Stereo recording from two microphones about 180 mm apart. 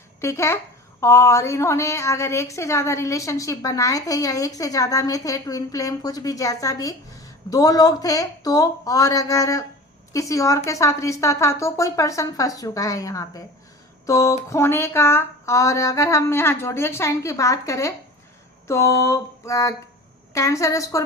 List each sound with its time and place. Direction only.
0.2 s a woman's voice: 15° left (ahead or behind)